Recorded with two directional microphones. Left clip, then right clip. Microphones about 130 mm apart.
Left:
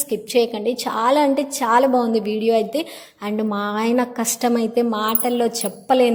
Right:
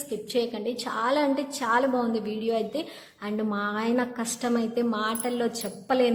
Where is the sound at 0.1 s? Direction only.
45° left (ahead or behind).